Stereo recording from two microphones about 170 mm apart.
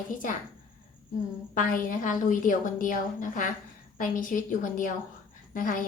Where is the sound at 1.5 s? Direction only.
50° left (ahead or behind).